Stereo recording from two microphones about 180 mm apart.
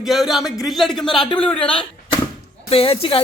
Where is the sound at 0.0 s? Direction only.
Centre (ahead or behind).